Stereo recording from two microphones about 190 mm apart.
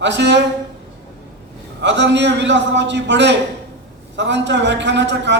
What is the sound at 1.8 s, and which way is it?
A man's voice, 65° right (ahead or behind).